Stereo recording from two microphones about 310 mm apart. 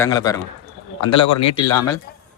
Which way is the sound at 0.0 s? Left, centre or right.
Centre.